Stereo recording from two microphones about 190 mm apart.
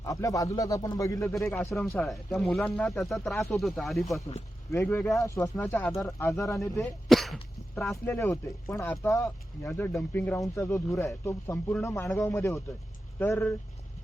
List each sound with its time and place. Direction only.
0.0 s speech: 15° left (ahead or behind)
1.7 s speech: 5° left (ahead or behind)
4.7 s speech: 10° left (ahead or behind)
6.7 s throat clearing: centre (ahead or behind)
7.9 s speech: 10° left (ahead or behind)